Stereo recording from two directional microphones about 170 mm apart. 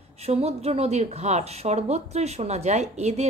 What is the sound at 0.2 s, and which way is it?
Speech, 35° right (ahead or behind).